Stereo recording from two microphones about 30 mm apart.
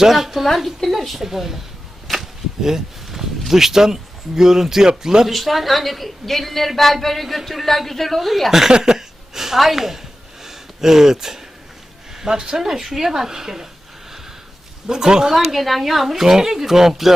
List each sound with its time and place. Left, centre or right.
0.0 s speech: centre
0.4 s a woman's voice: centre
2.1 s whip: centre
2.6 s speech: centre
5.3 s a woman's voice: centre
8.8 s a woman's voice: centre
10.4 s a sound: centre
12.1 s speech: centre
12.5 s speech: centre
14.8 s speech: right
15.3 s speech: centre
15.5 s a woman's voice: centre
16.2 s speech: centre